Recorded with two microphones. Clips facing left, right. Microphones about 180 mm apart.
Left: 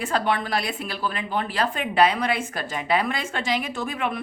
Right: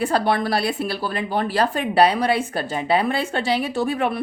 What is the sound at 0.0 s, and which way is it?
A woman's voice, 35° right (ahead or behind).